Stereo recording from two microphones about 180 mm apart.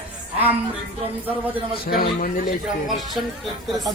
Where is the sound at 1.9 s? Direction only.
55° left (ahead or behind).